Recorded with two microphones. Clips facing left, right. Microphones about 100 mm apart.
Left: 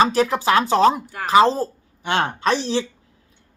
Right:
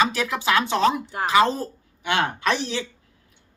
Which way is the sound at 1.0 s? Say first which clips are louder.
Right 3 dB; 25° right (ahead or behind).